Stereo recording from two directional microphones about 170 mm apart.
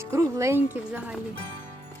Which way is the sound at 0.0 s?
15° right (ahead or behind).